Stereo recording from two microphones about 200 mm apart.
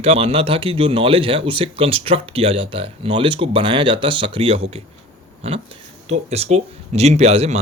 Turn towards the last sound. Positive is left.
turn(degrees=-30)  # may be behind; listen again after turning